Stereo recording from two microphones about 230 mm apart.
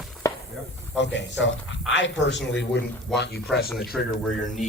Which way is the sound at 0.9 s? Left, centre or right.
Left.